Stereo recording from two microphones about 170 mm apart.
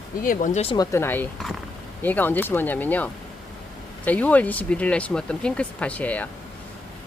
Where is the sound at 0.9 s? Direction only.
15° left (ahead or behind).